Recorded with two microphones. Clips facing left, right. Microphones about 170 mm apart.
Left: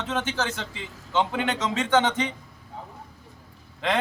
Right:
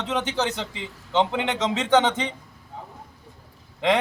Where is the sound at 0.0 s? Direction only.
20° right (ahead or behind).